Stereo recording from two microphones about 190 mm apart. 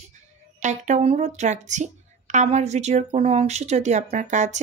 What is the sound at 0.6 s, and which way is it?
Speech, 40° right (ahead or behind).